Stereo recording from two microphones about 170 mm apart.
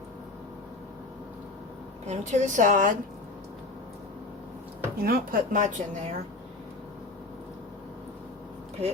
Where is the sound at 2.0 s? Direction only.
45° right (ahead or behind).